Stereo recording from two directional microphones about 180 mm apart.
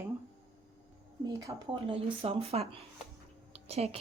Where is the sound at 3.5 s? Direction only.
35° right (ahead or behind).